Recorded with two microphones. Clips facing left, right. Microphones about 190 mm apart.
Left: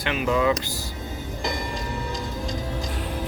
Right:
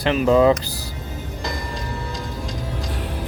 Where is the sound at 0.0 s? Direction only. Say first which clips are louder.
Right 7 dB; 35° right (ahead or behind).